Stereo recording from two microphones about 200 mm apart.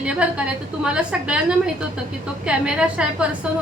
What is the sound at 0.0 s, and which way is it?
A woman's voice, 5° right (ahead or behind).